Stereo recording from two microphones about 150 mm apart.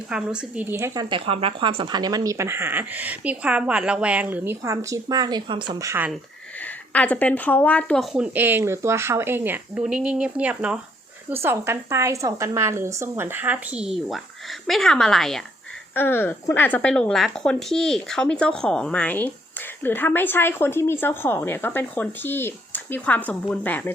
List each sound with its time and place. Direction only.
0.1 s a woman's voice: 5° right (ahead or behind)
1.1 s speech: 40° right (ahead or behind)
5.8 s speech: 20° right (ahead or behind)
6.9 s a woman's voice: 10° left (ahead or behind)
8.1 s a woman's voice: 10° right (ahead or behind)
14.7 s a woman's voice: 5° left (ahead or behind)
16.0 s a woman's voice: 15° left (ahead or behind)